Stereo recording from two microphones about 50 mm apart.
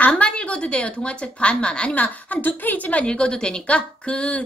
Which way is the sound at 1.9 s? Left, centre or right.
Left.